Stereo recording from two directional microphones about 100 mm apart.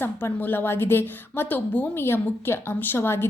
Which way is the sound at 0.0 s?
20° left (ahead or behind).